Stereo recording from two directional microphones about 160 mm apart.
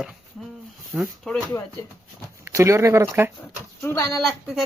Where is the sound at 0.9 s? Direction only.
10° right (ahead or behind).